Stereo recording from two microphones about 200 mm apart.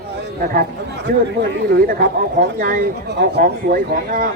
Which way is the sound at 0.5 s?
50° right (ahead or behind).